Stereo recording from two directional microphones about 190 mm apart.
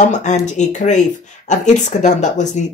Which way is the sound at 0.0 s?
40° left (ahead or behind).